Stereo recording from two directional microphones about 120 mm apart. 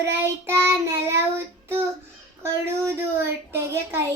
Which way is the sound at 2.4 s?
20° right (ahead or behind).